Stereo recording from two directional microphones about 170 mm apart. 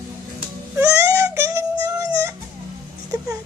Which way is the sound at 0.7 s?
15° right (ahead or behind).